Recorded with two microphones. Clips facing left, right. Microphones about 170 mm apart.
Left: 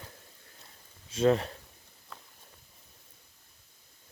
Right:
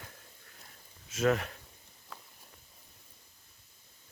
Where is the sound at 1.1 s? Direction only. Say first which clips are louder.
Left 4 dB; 30° left (ahead or behind).